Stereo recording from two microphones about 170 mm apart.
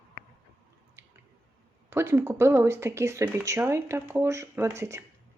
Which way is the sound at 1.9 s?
15° right (ahead or behind).